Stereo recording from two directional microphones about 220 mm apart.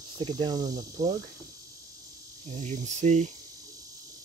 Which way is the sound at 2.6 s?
30° right (ahead or behind).